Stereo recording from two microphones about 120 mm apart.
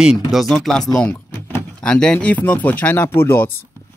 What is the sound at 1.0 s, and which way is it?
Speech, 15° left (ahead or behind).